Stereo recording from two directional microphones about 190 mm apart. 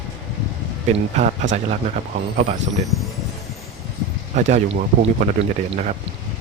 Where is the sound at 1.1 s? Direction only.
40° right (ahead or behind).